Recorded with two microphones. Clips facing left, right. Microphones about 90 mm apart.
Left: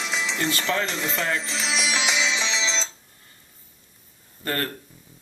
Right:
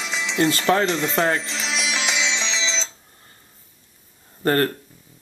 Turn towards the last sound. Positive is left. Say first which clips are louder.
# right 9 dB
turn(degrees=-35)  # may be behind; listen again after turning